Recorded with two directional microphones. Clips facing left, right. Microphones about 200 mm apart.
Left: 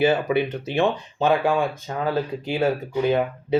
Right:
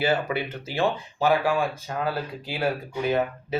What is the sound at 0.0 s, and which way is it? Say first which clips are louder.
Speech: left 5 dB; 20° left (ahead or behind).